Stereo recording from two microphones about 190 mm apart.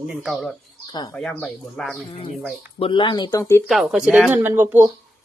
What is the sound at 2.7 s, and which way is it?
Speech, 25° left (ahead or behind).